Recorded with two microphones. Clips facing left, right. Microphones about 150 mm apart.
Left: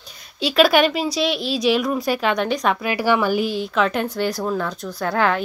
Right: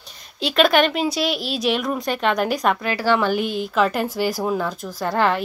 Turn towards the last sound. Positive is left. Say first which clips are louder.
# even
turn(degrees=0)  # may be behind; listen again after turning